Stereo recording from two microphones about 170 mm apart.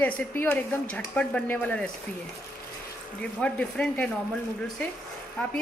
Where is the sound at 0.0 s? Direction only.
10° left (ahead or behind).